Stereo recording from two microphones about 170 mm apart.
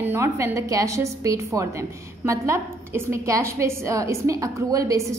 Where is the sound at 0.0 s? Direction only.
15° right (ahead or behind).